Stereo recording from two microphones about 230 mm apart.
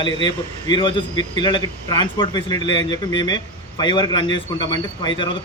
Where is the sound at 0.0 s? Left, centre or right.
Centre.